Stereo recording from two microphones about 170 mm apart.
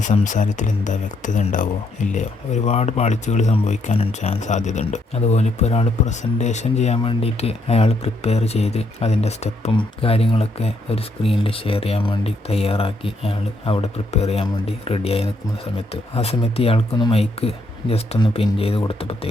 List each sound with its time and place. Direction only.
0.0 s speech: 45° left (ahead or behind)